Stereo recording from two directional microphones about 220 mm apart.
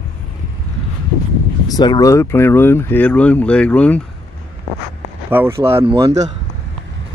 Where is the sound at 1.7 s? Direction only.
15° left (ahead or behind).